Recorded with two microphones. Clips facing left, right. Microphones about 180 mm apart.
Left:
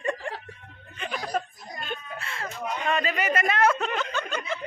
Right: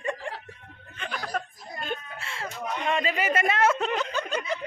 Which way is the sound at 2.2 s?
25° right (ahead or behind).